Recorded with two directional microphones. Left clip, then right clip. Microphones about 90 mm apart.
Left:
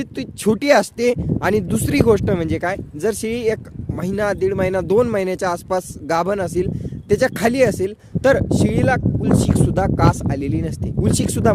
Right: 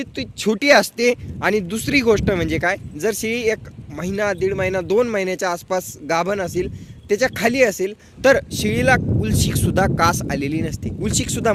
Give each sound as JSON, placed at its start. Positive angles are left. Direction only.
{"t": 0.0, "sound": "speech", "side_deg": 90}
{"t": 0.6, "sound": "speech", "side_deg": 35}
{"t": 1.6, "sound": "speech", "side_deg": 65}
{"t": 2.2, "sound": "speech", "side_deg": 35}
{"t": 3.0, "sound": "speech", "side_deg": 55}
{"t": 4.0, "sound": "speech", "side_deg": 65}
{"t": 8.2, "sound": "speech", "side_deg": 35}
{"t": 11.0, "sound": "speech", "side_deg": 90}